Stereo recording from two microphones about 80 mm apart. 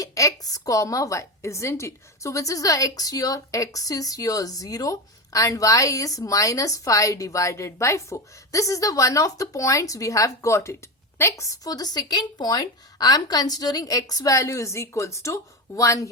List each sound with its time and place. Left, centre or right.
0.0 s a woman's voice: left